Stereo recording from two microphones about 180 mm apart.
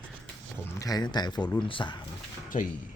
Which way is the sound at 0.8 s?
20° left (ahead or behind).